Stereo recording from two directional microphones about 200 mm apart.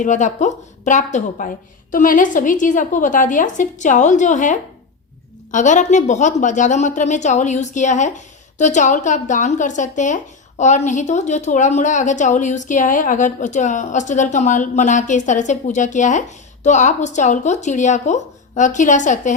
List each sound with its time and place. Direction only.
0.0 s a woman's voice: 40° left (ahead or behind)